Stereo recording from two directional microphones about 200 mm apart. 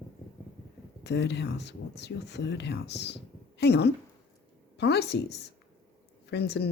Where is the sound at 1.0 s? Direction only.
55° left (ahead or behind).